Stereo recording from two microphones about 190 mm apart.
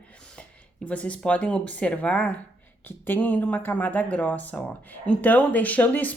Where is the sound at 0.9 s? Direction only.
5° left (ahead or behind).